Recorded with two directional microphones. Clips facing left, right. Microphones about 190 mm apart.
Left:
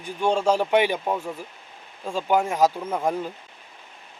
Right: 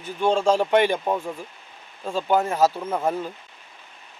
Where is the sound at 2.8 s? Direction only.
5° right (ahead or behind).